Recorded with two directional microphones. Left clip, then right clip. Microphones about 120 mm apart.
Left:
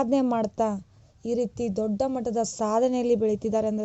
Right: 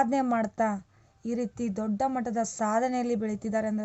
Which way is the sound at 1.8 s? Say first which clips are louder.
Left 1 dB; 35° left (ahead or behind).